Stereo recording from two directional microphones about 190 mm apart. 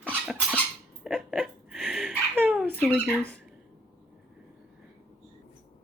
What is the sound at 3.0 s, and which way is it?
Speech, 5° left (ahead or behind).